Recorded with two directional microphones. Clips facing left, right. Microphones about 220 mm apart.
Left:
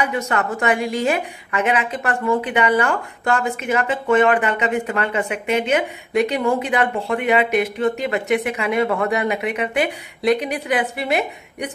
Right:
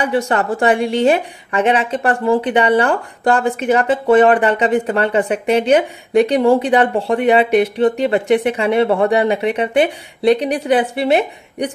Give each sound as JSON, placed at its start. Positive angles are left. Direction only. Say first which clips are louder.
{"t": 0.0, "sound": "a woman's voice", "louder": "right 5 dB", "side_deg": -30}